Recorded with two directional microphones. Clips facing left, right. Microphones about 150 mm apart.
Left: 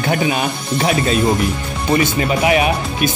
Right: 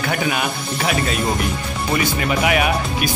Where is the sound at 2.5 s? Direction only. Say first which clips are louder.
Left 3 dB; 25° left (ahead or behind).